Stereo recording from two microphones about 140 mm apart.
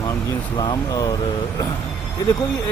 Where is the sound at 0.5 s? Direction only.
30° left (ahead or behind).